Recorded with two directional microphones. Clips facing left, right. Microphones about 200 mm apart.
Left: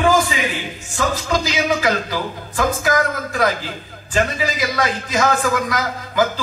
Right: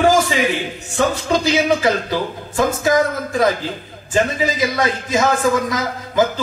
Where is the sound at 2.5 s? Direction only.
25° right (ahead or behind).